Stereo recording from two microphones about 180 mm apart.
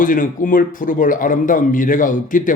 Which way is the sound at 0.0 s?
50° left (ahead or behind).